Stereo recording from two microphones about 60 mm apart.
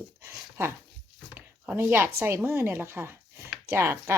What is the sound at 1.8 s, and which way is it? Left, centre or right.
Speech, right.